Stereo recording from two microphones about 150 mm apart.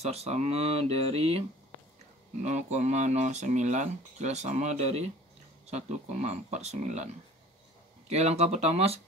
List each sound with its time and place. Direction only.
0.0 s speech: 45° right (ahead or behind)
2.4 s speech: 50° right (ahead or behind)
8.1 s speech: 45° right (ahead or behind)